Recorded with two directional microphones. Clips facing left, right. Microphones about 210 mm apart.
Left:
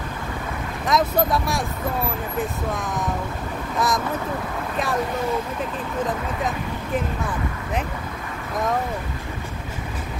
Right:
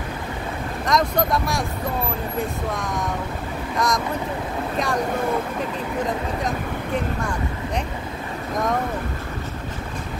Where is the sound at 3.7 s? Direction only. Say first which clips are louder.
Even; 5° left (ahead or behind).